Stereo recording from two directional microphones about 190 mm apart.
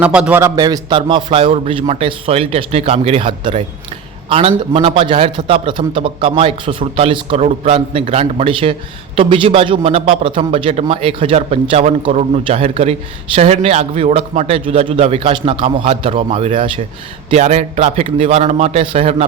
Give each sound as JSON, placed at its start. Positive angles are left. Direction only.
{"t": 0.0, "sound": "a man's voice", "side_deg": -5}